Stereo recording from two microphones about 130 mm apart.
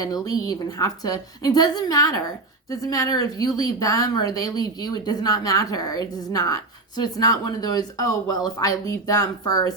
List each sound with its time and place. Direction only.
0.0 s speech: 30° left (ahead or behind)